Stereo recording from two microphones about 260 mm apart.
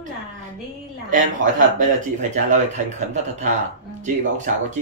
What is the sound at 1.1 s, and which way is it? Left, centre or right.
Speech, right.